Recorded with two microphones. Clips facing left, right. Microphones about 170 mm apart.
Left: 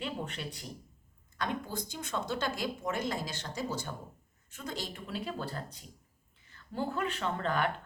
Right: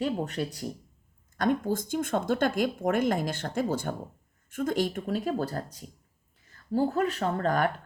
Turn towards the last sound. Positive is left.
turn(degrees=-40)  # may be behind; listen again after turning